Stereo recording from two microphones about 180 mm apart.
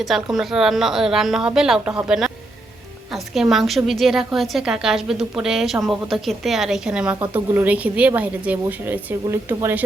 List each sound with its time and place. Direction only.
0.0 s a woman's voice: centre (ahead or behind)